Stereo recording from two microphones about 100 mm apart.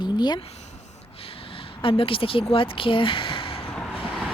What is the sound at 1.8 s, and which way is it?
Speech, 65° left (ahead or behind).